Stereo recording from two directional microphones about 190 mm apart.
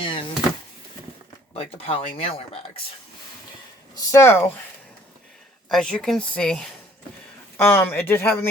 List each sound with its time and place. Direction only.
0.0 s a sound: 25° left (ahead or behind)
1.5 s speech: 30° left (ahead or behind)
3.9 s speech: 15° left (ahead or behind)
5.6 s speech: 5° left (ahead or behind)